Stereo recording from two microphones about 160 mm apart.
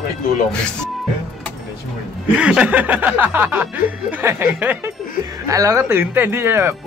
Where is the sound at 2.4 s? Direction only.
5° right (ahead or behind).